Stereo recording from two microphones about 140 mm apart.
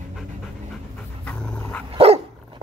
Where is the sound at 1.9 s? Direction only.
45° right (ahead or behind).